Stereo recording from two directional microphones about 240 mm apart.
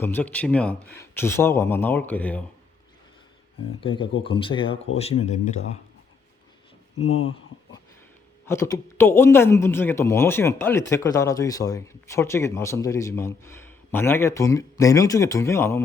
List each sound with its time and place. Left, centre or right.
0.0 s a man's voice: centre
3.8 s speech: left
7.0 s speech: left
8.4 s a man's voice: centre